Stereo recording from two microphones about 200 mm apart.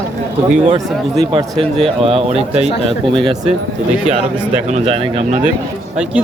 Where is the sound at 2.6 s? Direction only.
Centre (ahead or behind).